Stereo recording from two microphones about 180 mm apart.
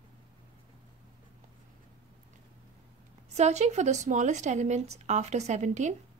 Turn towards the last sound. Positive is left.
turn(degrees=-40)  # may be behind; listen again after turning